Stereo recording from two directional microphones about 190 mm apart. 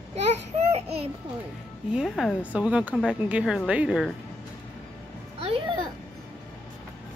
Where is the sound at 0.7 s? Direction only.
35° right (ahead or behind).